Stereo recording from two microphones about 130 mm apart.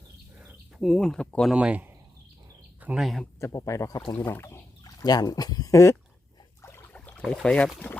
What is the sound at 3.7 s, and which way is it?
Speech, 25° left (ahead or behind).